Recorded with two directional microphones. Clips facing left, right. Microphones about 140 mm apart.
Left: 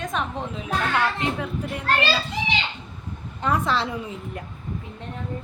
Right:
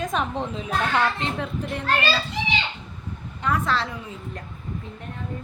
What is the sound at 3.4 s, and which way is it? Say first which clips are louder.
Speech: left 1 dB; 20° left (ahead or behind).